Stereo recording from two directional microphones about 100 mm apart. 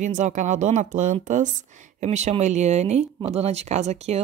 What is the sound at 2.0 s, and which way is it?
Speech, 90° right.